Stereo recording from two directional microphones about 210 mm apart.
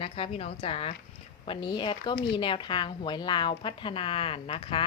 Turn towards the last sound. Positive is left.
turn(degrees=25)  # may be behind; listen again after turning